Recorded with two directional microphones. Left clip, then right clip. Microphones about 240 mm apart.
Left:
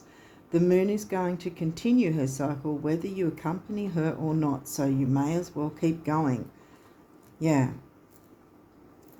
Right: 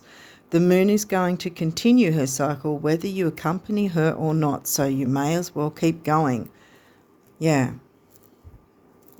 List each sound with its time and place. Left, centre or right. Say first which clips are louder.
0.1 s speech: right 5 dB; right